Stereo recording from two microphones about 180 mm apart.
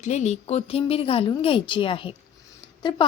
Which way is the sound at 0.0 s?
40° left (ahead or behind).